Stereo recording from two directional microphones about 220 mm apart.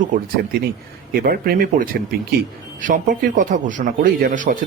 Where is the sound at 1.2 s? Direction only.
45° right (ahead or behind).